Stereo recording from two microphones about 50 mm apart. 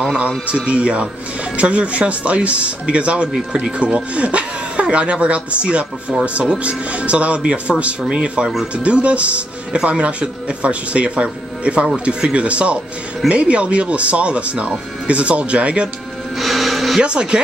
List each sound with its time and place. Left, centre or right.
0.6 s speech: right
16.3 s music: centre
17.0 s speech: centre